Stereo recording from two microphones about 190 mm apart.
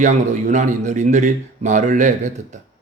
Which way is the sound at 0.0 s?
40° right (ahead or behind).